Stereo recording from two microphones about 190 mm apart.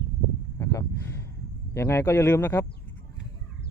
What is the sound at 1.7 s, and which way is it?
Speech, 15° left (ahead or behind).